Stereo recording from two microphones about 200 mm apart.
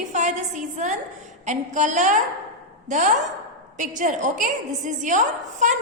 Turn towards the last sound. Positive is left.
turn(degrees=-40)  # may be behind; listen again after turning